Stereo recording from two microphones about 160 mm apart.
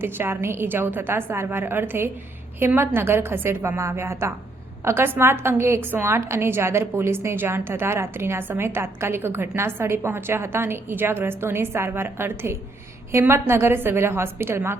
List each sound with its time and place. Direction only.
0.0 s a woman's voice: 15° right (ahead or behind)